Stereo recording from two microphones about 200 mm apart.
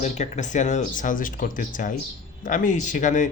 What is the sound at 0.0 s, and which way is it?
Speech, 35° left (ahead or behind).